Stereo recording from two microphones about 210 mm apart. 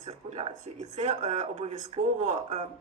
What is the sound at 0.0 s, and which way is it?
Speech, 30° right (ahead or behind).